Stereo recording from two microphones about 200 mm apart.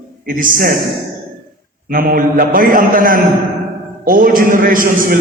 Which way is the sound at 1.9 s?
45° right (ahead or behind).